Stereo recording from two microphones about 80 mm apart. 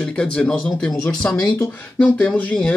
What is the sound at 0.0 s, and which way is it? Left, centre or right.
Speech, centre.